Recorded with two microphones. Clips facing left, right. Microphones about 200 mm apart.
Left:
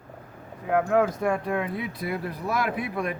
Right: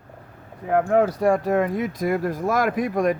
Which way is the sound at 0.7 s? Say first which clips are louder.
Right 3 dB; 45° right (ahead or behind).